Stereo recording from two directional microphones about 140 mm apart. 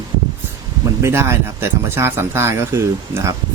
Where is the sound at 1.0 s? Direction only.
20° right (ahead or behind).